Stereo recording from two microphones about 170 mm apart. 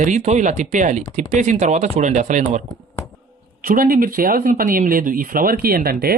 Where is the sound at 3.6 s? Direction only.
60° right (ahead or behind).